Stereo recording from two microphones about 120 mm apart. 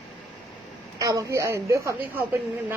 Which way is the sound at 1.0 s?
30° right (ahead or behind).